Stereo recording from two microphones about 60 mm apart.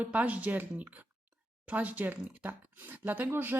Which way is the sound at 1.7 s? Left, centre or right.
Right.